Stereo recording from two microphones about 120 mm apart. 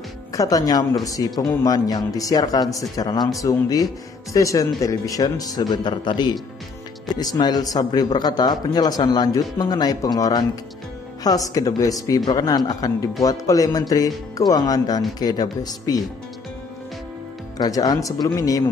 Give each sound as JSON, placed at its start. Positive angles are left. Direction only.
{"t": 0.3, "sound": "speech", "side_deg": 30}
{"t": 17.6, "sound": "speech", "side_deg": 30}